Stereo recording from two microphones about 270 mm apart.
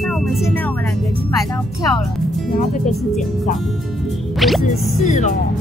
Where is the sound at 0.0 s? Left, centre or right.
Centre.